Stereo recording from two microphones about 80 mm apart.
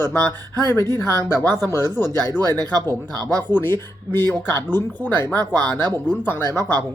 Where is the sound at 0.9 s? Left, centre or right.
Left.